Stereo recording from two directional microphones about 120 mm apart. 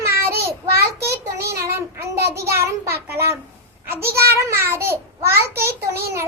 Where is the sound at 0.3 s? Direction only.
20° right (ahead or behind).